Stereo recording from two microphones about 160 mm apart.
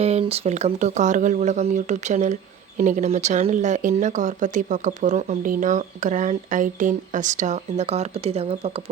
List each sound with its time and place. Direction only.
0.0 s speech: 40° right (ahead or behind)